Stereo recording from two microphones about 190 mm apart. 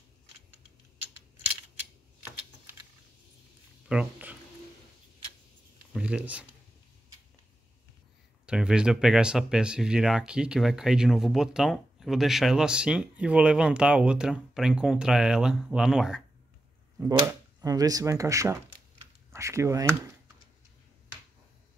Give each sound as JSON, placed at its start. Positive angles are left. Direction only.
{"t": 3.9, "sound": "a sound", "side_deg": -5}
{"t": 5.9, "sound": "speech", "side_deg": -5}
{"t": 8.5, "sound": "speech", "side_deg": -5}
{"t": 17.3, "sound": "speech", "side_deg": -20}